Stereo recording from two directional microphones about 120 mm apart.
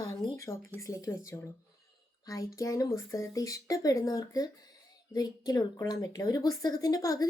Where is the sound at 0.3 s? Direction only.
25° left (ahead or behind).